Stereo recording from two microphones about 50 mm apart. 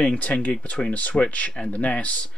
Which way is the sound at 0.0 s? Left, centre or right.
Left.